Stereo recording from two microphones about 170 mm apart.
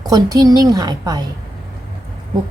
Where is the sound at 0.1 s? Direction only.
20° right (ahead or behind).